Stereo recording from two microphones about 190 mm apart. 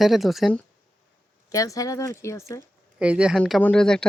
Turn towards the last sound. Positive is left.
turn(degrees=5)  # may be behind; listen again after turning